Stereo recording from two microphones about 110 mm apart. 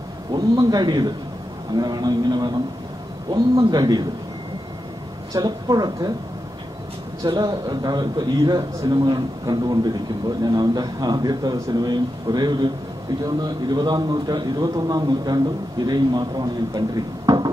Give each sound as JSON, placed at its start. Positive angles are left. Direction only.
{"t": 0.3, "sound": "speech", "side_deg": -35}
{"t": 5.3, "sound": "speech", "side_deg": -35}
{"t": 7.2, "sound": "speech", "side_deg": -40}